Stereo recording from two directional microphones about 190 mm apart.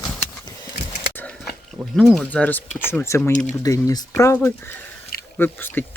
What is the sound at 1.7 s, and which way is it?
Speech, centre (ahead or behind).